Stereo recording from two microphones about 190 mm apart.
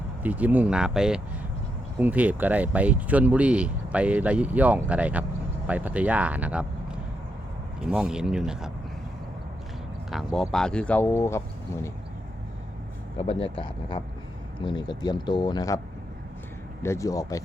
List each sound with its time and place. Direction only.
0.2 s speech: 10° right (ahead or behind)
7.9 s speech: 5° right (ahead or behind)
10.1 s speech: centre (ahead or behind); by 11.9 s 15° left (ahead or behind)
13.1 s speech: 30° left (ahead or behind)
16.8 s speech: 15° left (ahead or behind)